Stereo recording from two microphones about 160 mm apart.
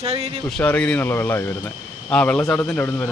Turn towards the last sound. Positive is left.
turn(degrees=10)  # may be behind; listen again after turning